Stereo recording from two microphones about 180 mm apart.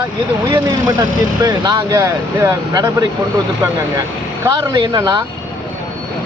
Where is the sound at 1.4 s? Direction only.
25° right (ahead or behind).